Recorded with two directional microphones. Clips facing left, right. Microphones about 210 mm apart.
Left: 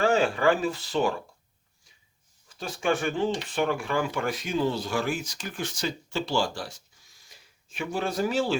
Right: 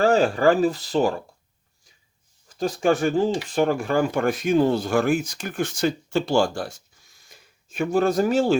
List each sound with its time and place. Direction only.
0.0 s speech: 40° right (ahead or behind)
2.5 s speech: 40° right (ahead or behind)